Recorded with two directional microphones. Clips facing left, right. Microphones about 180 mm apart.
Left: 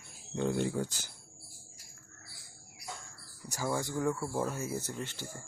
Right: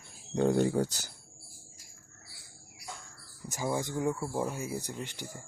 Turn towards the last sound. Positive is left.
turn(degrees=-15)  # may be behind; listen again after turning